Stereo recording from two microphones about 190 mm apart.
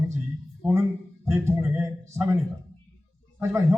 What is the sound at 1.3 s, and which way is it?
A man's voice, 15° right (ahead or behind).